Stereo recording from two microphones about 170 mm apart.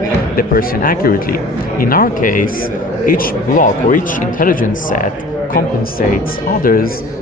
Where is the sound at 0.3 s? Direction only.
55° left (ahead or behind).